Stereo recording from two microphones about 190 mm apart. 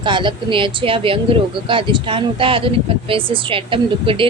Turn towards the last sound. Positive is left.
turn(degrees=-25)  # may be behind; listen again after turning